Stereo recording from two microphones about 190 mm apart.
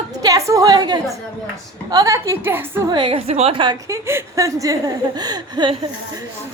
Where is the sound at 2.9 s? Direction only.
25° right (ahead or behind).